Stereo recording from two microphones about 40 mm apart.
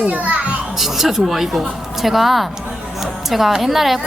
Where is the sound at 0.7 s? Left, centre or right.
Centre.